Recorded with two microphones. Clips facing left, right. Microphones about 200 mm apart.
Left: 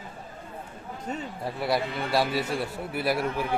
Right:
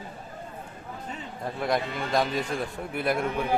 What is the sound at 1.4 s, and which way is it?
A man's voice, 5° left (ahead or behind).